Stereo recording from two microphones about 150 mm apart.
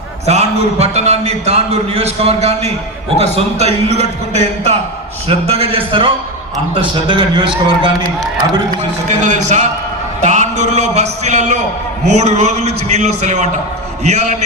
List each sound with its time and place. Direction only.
0.3 s a man's voice: 45° right (ahead or behind)
8.7 s a man's voice: 55° right (ahead or behind)